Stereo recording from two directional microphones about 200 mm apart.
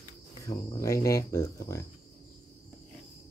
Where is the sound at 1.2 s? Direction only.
15° left (ahead or behind).